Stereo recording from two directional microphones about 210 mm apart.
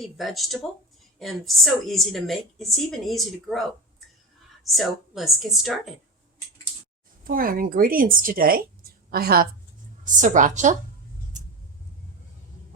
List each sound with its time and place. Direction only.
0.0 s a woman's voice: centre (ahead or behind)
7.3 s a woman's voice: 40° right (ahead or behind)